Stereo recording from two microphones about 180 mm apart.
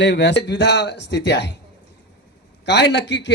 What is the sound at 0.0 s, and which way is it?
Speech, 75° left (ahead or behind).